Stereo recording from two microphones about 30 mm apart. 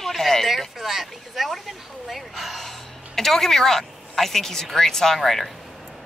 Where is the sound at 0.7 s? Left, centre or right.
Centre.